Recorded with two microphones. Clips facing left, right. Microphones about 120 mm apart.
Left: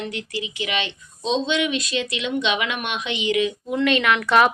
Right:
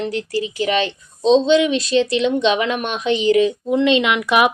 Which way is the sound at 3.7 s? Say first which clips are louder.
Right 4 dB; 20° right (ahead or behind).